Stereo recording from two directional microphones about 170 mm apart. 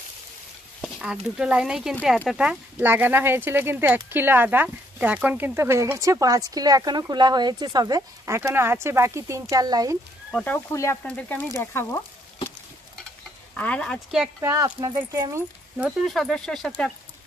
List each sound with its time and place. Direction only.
0.7 s speech: centre (ahead or behind); by 9.9 s 20° right (ahead or behind)
10.3 s speech: 10° left (ahead or behind)
13.6 s speech: 5° left (ahead or behind)
14.4 s speech: 20° right (ahead or behind)
15.8 s speech: centre (ahead or behind)